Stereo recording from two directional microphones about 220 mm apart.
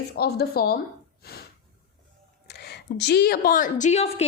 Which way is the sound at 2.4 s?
50° left (ahead or behind).